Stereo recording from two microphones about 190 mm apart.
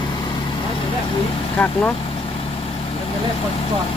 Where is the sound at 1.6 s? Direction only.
10° left (ahead or behind).